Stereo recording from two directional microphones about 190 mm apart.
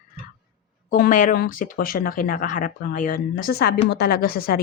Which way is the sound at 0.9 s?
45° left (ahead or behind).